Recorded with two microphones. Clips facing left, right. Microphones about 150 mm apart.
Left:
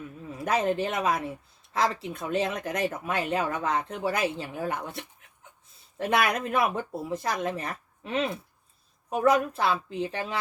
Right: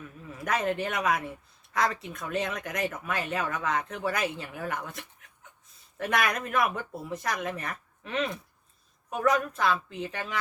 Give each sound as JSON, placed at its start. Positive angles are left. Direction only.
{"t": 0.3, "sound": "speech", "side_deg": 30}